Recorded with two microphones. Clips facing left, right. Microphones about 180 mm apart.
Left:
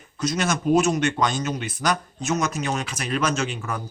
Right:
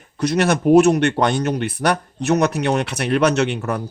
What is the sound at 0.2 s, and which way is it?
A man's voice, 60° right (ahead or behind).